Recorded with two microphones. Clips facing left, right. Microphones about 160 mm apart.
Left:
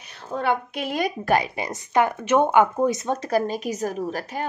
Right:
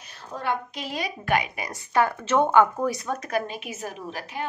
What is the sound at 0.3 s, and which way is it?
A woman's voice, 60° left (ahead or behind).